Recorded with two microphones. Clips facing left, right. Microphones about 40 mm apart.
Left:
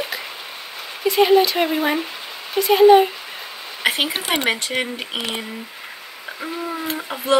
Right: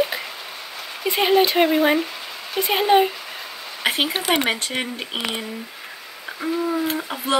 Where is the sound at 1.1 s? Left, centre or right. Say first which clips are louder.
Left 2 dB; centre.